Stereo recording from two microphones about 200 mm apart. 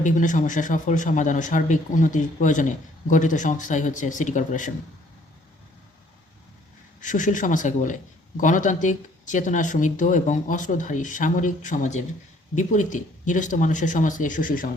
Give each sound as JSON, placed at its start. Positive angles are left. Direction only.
{"t": 0.0, "sound": "speech", "side_deg": 40}
{"t": 7.0, "sound": "speech", "side_deg": 40}